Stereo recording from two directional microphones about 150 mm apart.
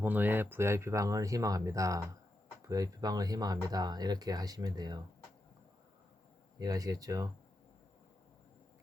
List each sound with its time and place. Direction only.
0.0 s speech: 10° right (ahead or behind); by 5.0 s 25° right (ahead or behind)
6.6 s speech: 25° right (ahead or behind)